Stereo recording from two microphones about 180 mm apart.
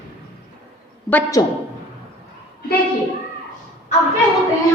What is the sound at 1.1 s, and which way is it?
Speech, 20° left (ahead or behind).